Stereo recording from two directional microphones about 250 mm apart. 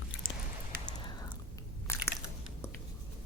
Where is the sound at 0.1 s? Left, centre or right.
Left.